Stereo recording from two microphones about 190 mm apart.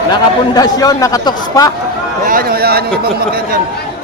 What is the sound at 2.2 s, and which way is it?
Speech, 50° right (ahead or behind).